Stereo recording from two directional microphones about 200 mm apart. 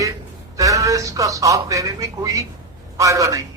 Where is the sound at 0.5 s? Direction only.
15° right (ahead or behind).